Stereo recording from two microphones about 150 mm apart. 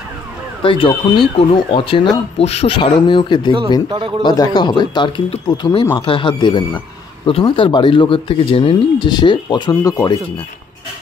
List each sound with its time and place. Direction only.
0.6 s speech: 35° left (ahead or behind)